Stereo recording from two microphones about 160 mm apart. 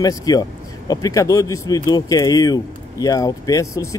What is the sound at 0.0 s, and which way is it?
Speech, 25° left (ahead or behind).